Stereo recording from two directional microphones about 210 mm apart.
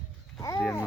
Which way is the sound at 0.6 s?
5° left (ahead or behind).